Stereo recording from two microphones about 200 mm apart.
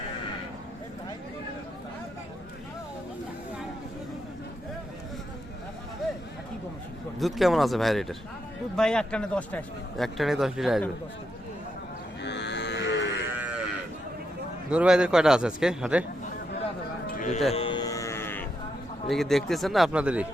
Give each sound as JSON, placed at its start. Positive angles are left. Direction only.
{"t": 7.2, "sound": "a man's voice", "side_deg": 0}
{"t": 12.2, "sound": "livestock", "side_deg": 60}
{"t": 13.3, "sound": "moo", "side_deg": -5}
{"t": 14.7, "sound": "a man's voice", "side_deg": -5}
{"t": 17.2, "sound": "a sound", "side_deg": 40}
{"t": 17.5, "sound": "a sound", "side_deg": 25}
{"t": 19.0, "sound": "a man's voice", "side_deg": 0}